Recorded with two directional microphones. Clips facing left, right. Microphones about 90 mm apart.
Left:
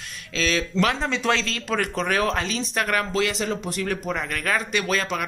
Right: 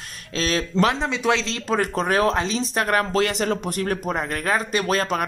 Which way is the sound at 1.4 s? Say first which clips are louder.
Right 3 dB; 30° right (ahead or behind).